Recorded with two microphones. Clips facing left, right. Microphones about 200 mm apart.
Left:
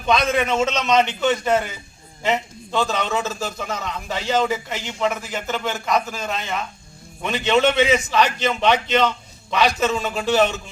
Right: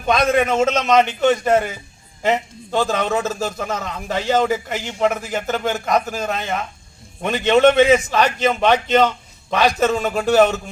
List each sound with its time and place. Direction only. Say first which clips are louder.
0.0 s a man's voice: right 3 dB; 50° right (ahead or behind)